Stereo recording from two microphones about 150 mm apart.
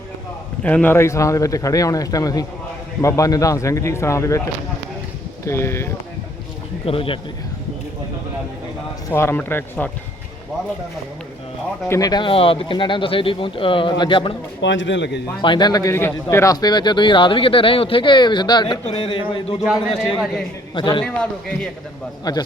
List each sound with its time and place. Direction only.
0.6 s speech: 10° left (ahead or behind)
5.5 s speech: 20° left (ahead or behind)
6.8 s a man's voice: 40° left (ahead or behind)
9.0 s speech: 15° left (ahead or behind)
11.9 s a man's voice: 25° left (ahead or behind)
15.4 s a man's voice: 30° left (ahead or behind)
19.6 s a man's voice: 5° right (ahead or behind)
20.7 s a man's voice: 30° left (ahead or behind)
21.0 s speech: 5° left (ahead or behind)
22.2 s speech: 25° left (ahead or behind)